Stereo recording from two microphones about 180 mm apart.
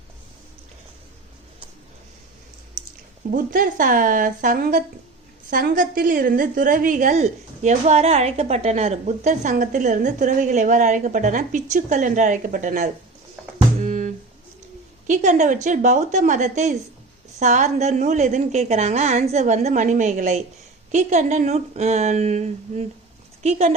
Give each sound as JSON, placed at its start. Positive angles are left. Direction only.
{"t": 3.3, "sound": "a woman's voice", "side_deg": -50}
{"t": 13.8, "sound": "music", "side_deg": -40}
{"t": 15.0, "sound": "a woman's voice", "side_deg": -45}